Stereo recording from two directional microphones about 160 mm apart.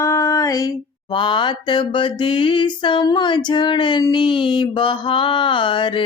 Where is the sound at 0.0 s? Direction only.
20° left (ahead or behind).